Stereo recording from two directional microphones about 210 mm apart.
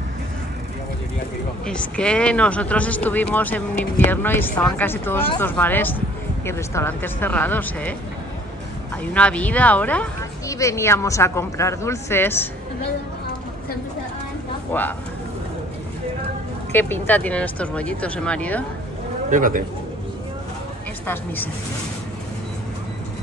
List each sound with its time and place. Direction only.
1.7 s speech: 5° left (ahead or behind)
8.9 s speech: 5° left (ahead or behind)
14.7 s speech: 10° left (ahead or behind)
16.7 s speech: 10° left (ahead or behind)
19.3 s speech: 40° right (ahead or behind)